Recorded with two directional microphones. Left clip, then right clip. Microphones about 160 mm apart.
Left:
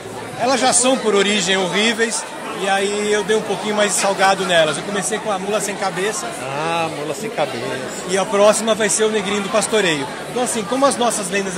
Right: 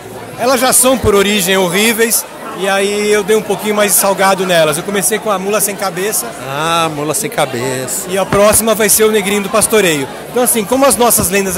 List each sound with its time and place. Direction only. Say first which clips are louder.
0.4 s a man's voice: right 5 dB; 35° right (ahead or behind)
8.4 s a man's voice: right 4 dB; 30° right (ahead or behind)